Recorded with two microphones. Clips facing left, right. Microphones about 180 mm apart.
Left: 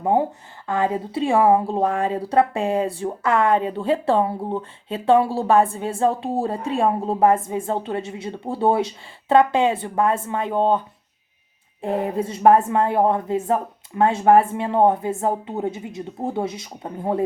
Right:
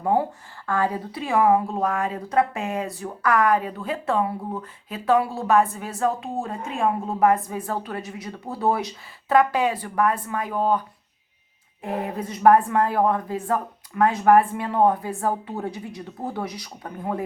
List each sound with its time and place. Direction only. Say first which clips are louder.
0.0 s speech: left 2 dB; 20° left (ahead or behind)